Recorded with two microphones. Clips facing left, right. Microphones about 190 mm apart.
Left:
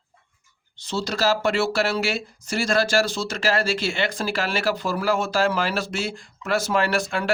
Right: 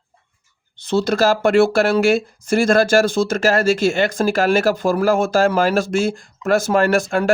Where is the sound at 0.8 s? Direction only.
55° right (ahead or behind).